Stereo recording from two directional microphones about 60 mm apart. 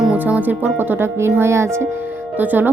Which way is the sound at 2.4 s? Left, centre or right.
Right.